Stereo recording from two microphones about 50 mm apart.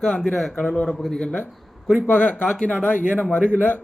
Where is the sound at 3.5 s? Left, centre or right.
Left.